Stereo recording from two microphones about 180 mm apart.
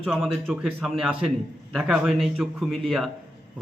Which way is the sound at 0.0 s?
5° right (ahead or behind).